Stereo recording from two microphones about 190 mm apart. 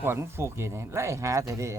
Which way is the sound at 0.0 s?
15° right (ahead or behind).